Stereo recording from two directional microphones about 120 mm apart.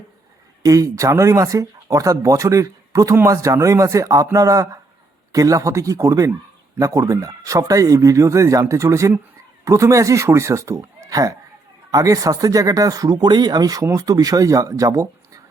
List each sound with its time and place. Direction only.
0.6 s speech: 30° right (ahead or behind)